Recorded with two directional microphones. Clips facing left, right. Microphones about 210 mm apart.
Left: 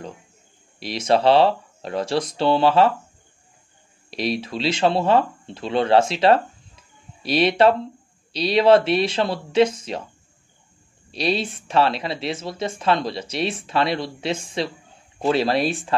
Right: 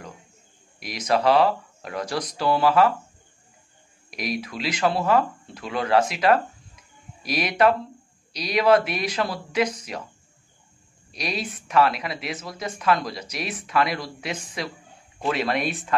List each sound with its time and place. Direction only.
0.7 s speech: 30° left (ahead or behind)
4.1 s speech: 30° left (ahead or behind)
11.1 s speech: 30° left (ahead or behind)